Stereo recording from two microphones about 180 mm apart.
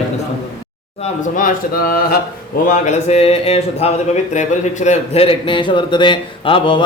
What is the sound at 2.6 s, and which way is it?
A man's voice, 40° left (ahead or behind).